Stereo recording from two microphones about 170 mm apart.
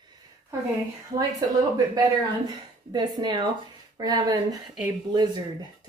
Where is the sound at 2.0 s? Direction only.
25° right (ahead or behind).